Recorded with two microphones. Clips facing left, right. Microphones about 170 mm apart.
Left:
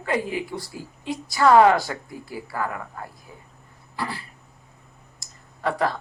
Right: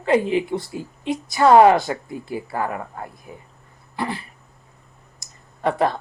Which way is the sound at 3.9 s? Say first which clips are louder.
Right 4 dB; 20° right (ahead or behind).